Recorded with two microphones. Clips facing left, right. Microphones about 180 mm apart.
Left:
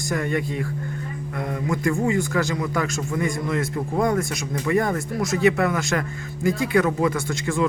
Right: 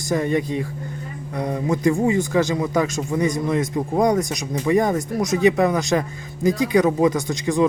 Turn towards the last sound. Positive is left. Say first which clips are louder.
# right 4 dB
turn(degrees=-20)  # may be behind; listen again after turning